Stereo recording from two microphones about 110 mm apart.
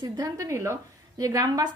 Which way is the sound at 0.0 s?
35° right (ahead or behind).